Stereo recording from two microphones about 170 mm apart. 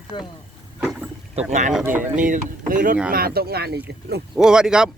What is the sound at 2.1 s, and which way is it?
Speech, 50° right (ahead or behind).